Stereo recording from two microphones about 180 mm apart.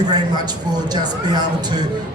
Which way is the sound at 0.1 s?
20° right (ahead or behind).